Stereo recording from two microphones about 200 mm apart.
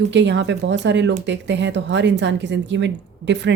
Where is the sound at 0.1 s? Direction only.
60° right (ahead or behind).